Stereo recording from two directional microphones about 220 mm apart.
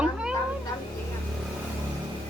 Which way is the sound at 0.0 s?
5° right (ahead or behind).